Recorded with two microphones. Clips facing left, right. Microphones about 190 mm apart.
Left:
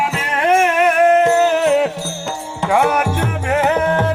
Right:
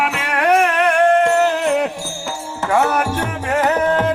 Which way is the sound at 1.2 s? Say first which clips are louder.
Left 2 dB; 5° left (ahead or behind).